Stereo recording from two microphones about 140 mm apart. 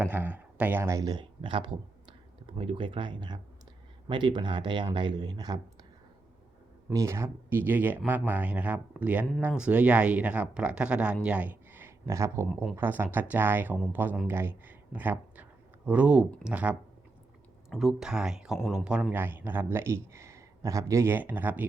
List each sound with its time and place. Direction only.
0.0 s speech: 10° right (ahead or behind); by 5.5 s 30° right (ahead or behind)
6.9 s speech: 20° right (ahead or behind); by 18.8 s 5° right (ahead or behind)
19.1 s speech: 15° right (ahead or behind)